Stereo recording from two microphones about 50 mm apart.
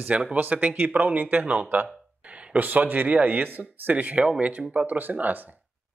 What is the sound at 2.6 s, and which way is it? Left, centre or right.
Speech, right.